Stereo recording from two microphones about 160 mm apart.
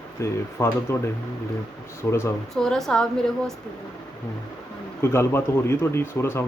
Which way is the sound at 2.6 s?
5° left (ahead or behind).